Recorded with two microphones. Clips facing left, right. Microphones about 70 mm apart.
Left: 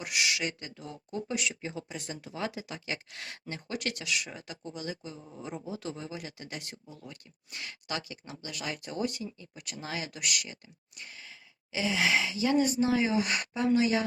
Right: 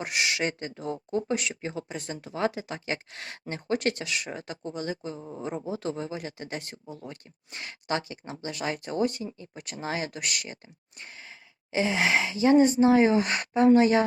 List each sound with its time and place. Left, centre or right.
0.0 s speech: right